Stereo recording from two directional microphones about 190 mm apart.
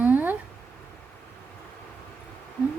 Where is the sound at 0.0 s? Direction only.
10° right (ahead or behind).